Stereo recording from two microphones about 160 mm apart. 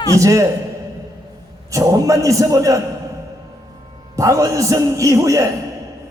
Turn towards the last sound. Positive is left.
turn(degrees=-20)  # may be behind; listen again after turning